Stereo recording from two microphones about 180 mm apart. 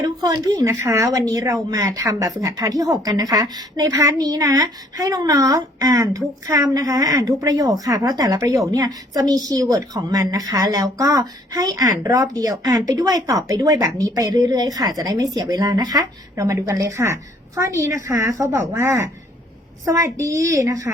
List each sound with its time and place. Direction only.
0.0 s a woman's voice: 20° right (ahead or behind)